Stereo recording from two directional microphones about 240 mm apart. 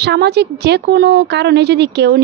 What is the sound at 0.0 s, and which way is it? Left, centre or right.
A woman's voice, right.